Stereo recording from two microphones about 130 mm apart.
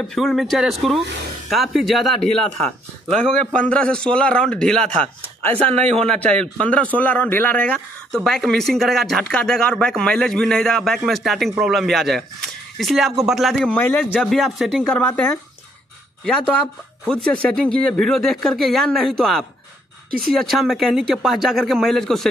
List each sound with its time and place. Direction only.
0.0 s a man's voice: 5° left (ahead or behind)
5.7 s a man's voice: 50° right (ahead or behind)
6.0 s a man's voice: 10° left (ahead or behind)
13.7 s a man's voice: 15° left (ahead or behind)
14.2 s a man's voice: centre (ahead or behind)